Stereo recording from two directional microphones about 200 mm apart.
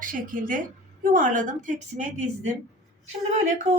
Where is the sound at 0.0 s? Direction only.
40° right (ahead or behind).